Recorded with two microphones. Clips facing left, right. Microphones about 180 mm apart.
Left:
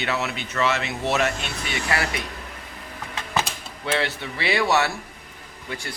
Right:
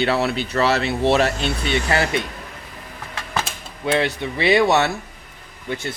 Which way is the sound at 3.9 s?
20° right (ahead or behind).